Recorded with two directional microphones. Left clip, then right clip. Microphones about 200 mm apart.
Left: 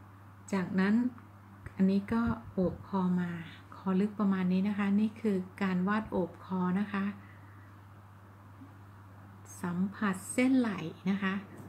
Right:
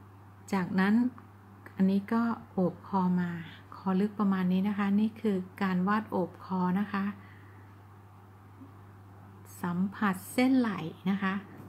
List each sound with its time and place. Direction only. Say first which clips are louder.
0.5 s speech: right 2 dB; 20° right (ahead or behind)
9.6 s speech: right 3 dB; 15° right (ahead or behind)